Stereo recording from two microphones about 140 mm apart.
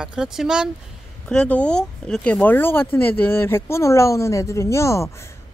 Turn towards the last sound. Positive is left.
turn(degrees=20)  # may be behind; listen again after turning